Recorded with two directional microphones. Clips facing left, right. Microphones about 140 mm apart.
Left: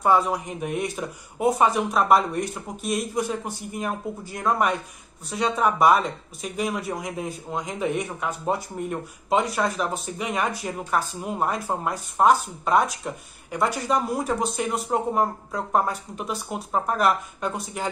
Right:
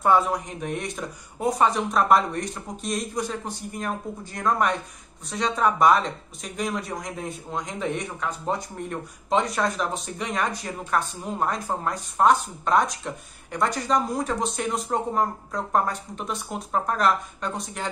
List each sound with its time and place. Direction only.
0.0 s speech: centre (ahead or behind)